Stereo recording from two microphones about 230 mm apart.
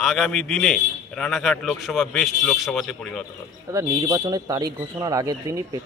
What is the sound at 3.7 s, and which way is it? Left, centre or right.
Speech, centre.